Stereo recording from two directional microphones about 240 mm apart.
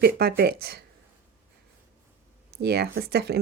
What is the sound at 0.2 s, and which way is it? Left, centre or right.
Speech, right.